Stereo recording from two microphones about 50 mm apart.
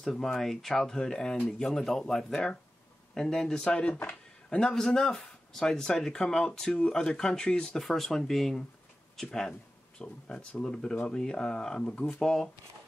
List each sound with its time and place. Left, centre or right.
0.0 s speech: centre
7.8 s speech: centre
11.8 s speech: left
12.2 s speech: centre